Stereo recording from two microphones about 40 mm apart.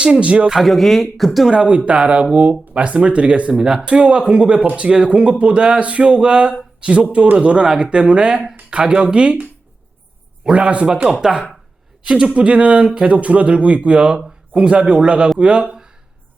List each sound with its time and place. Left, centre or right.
0.0 s speech: right
0.6 s speech: centre
1.9 s speech: right
10.5 s speech: right
15.6 s a sound: centre